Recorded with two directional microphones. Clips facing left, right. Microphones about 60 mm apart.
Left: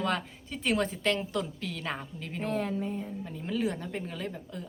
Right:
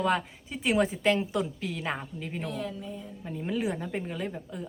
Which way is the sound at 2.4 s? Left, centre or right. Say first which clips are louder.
Left 6 dB; left.